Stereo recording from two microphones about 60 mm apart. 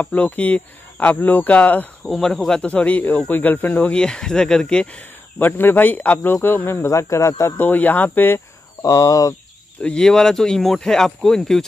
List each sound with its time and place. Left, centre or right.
0.0 s speech: left
2.0 s speech: centre
2.6 s speech: left
3.9 s speech: centre
5.4 s speech: left
6.9 s speech: left
7.5 s speech: left
8.8 s speech: left
9.8 s speech: centre
10.0 s speech: centre